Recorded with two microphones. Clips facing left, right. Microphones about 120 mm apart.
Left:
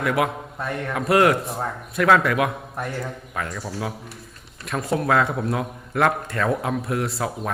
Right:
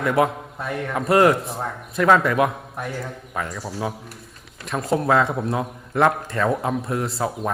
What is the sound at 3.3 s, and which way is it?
Speech, 15° right (ahead or behind).